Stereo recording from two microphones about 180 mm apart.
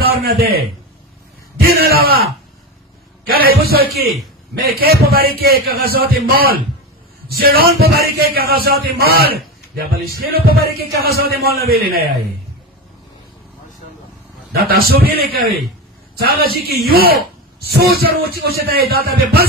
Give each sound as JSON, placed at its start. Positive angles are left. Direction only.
{"t": 0.0, "sound": "a man's voice", "side_deg": -60}
{"t": 3.3, "sound": "a man's voice", "side_deg": -55}
{"t": 14.5, "sound": "a man's voice", "side_deg": -60}